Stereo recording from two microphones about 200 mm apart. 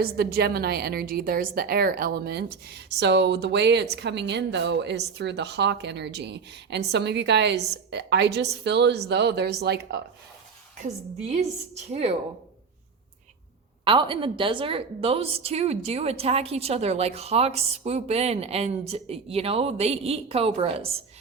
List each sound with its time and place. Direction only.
0.0 s a woman's voice: 50° right (ahead or behind)
11.3 s a woman's voice: 35° right (ahead or behind)
13.8 s a woman's voice: 25° right (ahead or behind)